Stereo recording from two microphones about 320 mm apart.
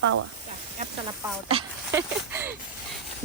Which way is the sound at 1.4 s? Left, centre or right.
Centre.